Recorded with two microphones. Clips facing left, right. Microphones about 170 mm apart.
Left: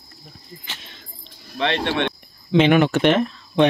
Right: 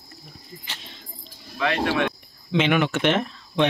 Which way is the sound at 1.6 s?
30° left (ahead or behind).